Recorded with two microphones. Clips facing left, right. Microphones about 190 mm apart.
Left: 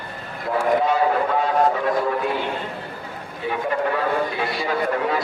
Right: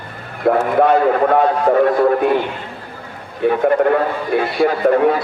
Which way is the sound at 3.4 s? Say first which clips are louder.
Right 10 dB; 60° right (ahead or behind).